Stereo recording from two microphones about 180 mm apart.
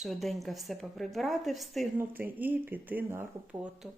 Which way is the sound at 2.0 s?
10° right (ahead or behind).